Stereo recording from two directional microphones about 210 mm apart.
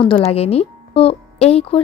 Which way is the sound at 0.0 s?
25° left (ahead or behind).